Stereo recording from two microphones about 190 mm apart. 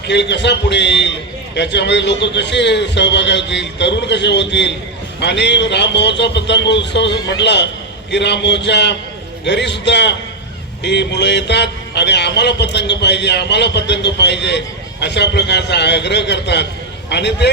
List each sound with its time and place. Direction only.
0.1 s speech: 65° left (ahead or behind)